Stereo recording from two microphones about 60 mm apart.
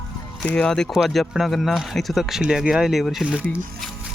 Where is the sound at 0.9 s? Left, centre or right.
Centre.